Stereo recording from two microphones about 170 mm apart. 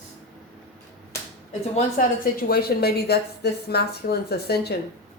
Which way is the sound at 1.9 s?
55° left (ahead or behind).